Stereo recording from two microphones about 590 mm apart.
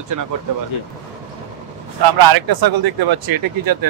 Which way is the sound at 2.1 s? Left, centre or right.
Right.